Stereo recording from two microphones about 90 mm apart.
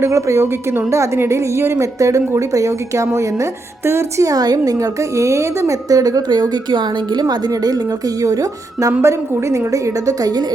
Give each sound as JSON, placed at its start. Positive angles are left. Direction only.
{"t": 0.0, "sound": "a woman's voice", "side_deg": -35}
{"t": 4.3, "sound": "a woman's voice", "side_deg": -45}